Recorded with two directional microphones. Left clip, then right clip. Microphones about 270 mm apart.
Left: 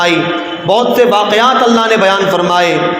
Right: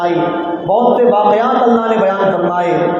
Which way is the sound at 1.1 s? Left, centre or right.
Left.